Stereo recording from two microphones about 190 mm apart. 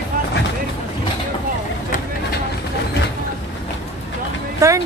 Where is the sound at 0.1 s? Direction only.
45° right (ahead or behind).